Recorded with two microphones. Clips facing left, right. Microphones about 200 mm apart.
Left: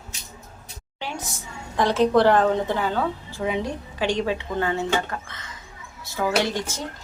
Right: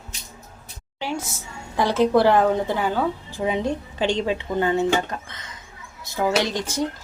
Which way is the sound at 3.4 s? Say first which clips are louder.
Right 3 dB; 20° right (ahead or behind).